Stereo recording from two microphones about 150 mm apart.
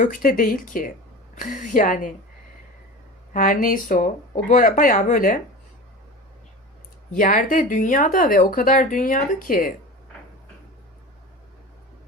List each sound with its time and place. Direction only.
0.0 s speech: 65° left (ahead or behind)
3.3 s speech: 65° left (ahead or behind)
7.2 s speech: 60° left (ahead or behind)